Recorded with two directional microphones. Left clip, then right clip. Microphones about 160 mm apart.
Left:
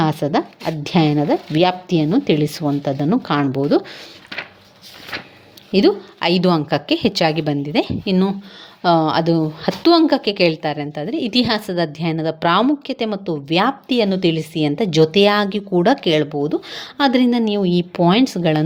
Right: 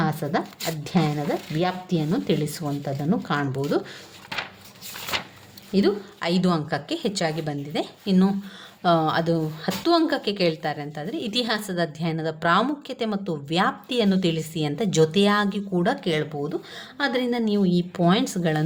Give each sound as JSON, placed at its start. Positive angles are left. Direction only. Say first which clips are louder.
{"t": 0.0, "sound": "a woman's voice", "louder": "left 7 dB", "side_deg": 40}
{"t": 5.7, "sound": "a woman's voice", "louder": "left 8 dB", "side_deg": 40}
{"t": 8.8, "sound": "a woman's voice", "louder": "left 6 dB", "side_deg": 30}